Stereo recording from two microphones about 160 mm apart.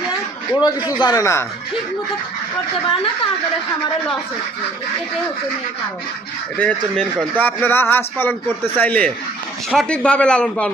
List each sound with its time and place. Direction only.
0.6 s a man's voice: 10° right (ahead or behind)
0.9 s speech: 25° left (ahead or behind)
6.6 s speech: 10° left (ahead or behind)